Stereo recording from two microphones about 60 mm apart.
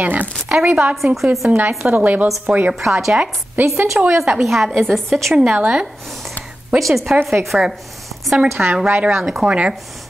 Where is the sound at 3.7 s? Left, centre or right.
Right.